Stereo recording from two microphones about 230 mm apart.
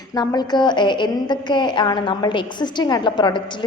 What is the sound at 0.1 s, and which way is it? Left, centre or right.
A woman's voice, centre.